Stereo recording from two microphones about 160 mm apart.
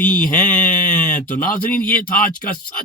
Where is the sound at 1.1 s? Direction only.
55° left (ahead or behind).